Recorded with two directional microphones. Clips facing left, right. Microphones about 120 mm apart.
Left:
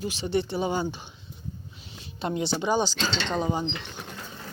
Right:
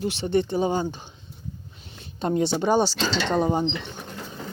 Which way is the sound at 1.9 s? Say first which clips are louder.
Right 5 dB; 50° right (ahead or behind).